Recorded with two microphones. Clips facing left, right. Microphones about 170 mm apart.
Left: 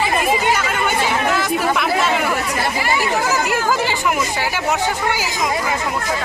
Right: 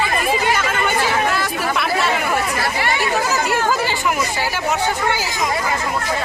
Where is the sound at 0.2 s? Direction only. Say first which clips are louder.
Left 1 dB; 15° left (ahead or behind).